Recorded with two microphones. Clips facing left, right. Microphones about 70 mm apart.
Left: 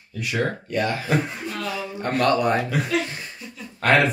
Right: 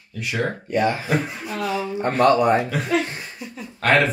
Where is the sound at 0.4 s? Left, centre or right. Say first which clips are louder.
Right 3 dB; centre.